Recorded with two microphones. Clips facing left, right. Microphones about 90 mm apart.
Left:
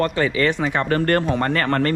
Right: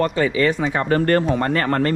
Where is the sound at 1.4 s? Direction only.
50° left (ahead or behind).